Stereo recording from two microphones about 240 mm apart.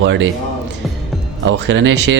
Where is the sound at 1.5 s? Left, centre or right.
Right.